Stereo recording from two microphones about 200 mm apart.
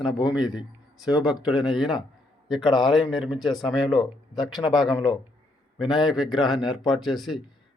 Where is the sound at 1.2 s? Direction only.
5° right (ahead or behind).